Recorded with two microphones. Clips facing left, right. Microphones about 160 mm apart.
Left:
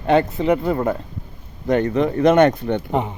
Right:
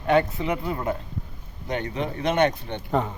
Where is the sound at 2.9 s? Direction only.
20° left (ahead or behind).